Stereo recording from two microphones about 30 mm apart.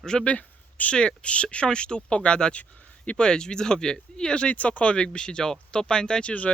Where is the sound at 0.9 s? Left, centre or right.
Left.